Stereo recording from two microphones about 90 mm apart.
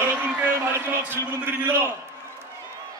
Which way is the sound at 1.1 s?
25° right (ahead or behind).